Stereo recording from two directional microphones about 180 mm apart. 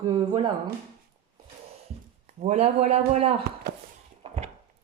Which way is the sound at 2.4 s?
40° right (ahead or behind).